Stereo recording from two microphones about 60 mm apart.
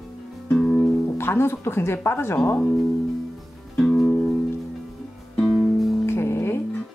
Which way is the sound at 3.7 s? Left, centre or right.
Centre.